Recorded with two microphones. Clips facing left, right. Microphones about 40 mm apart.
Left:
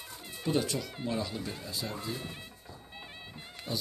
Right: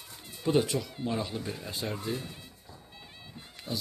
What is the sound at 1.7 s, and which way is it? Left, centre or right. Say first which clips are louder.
Speech: right 4 dB; right.